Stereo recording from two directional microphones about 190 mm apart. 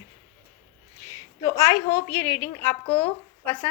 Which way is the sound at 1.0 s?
15° left (ahead or behind).